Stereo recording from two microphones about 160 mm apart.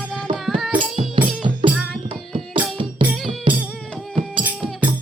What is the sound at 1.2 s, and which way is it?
Music, 30° right (ahead or behind).